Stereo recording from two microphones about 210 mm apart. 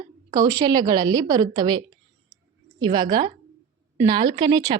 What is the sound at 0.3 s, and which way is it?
A woman's voice, 15° right (ahead or behind).